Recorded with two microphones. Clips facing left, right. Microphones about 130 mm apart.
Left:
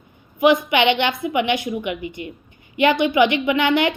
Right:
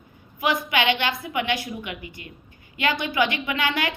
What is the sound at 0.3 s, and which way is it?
A woman's voice, 20° left (ahead or behind).